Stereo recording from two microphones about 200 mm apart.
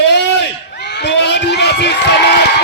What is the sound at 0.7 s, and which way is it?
Crowd, 60° left (ahead or behind).